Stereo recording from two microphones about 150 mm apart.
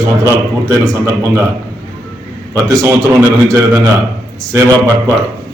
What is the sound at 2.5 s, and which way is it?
A man's voice, 20° right (ahead or behind).